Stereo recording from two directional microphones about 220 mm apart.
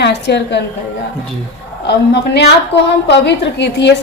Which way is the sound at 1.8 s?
50° left (ahead or behind).